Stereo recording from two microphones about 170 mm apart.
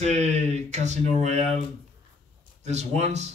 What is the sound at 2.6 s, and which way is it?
Speech, 40° right (ahead or behind).